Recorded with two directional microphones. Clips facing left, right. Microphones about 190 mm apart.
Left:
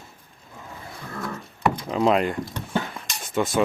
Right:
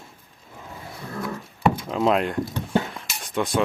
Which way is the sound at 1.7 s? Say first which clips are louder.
Left 5 dB; centre (ahead or behind).